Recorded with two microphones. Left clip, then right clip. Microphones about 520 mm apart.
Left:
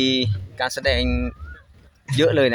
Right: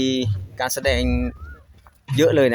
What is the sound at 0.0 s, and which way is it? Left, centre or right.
Speech, right.